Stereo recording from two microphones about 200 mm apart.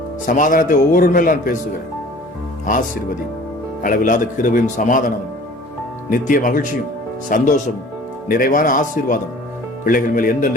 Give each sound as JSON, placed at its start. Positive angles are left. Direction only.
{"t": 0.3, "sound": "a man's voice", "side_deg": 40}
{"t": 2.6, "sound": "a man's voice", "side_deg": 40}